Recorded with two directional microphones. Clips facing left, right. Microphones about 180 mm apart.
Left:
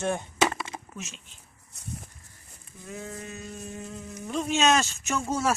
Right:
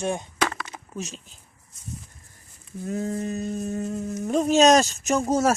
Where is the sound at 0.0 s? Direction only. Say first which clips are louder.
Right 1 dB; 15° right (ahead or behind).